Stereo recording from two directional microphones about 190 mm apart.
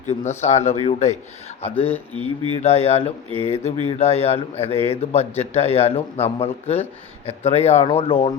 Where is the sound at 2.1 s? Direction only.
25° right (ahead or behind).